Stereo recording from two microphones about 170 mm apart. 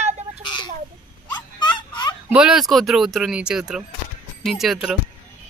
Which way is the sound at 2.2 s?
5° right (ahead or behind).